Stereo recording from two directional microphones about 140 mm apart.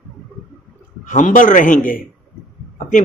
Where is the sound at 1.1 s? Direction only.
65° left (ahead or behind).